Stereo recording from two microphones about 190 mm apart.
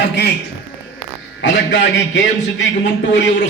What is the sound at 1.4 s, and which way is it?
A man's voice, 70° left (ahead or behind).